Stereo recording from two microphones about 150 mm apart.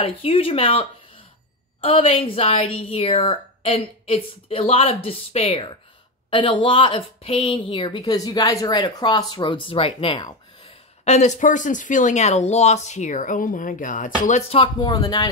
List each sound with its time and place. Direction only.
0.0 s a woman's voice: 40° left (ahead or behind)
11.1 s speech: 50° left (ahead or behind)
14.5 s speech: 35° left (ahead or behind)